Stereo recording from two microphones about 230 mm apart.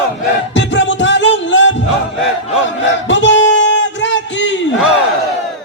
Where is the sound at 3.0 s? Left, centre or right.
Left.